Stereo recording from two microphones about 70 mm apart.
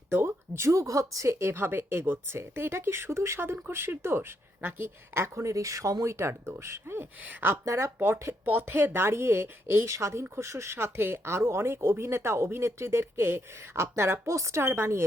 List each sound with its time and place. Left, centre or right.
0.1 s speech: right
7.6 s speech: right
7.9 s speech: right
9.8 s speech: right